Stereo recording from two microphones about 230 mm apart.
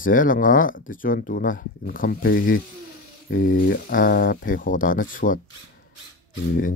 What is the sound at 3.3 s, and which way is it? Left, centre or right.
Speech, left.